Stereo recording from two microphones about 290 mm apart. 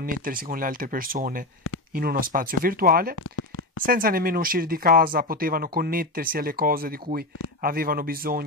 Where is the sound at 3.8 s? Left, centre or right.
Right.